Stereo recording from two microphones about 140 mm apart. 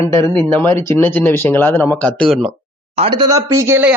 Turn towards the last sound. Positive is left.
turn(degrees=-15)  # may be behind; listen again after turning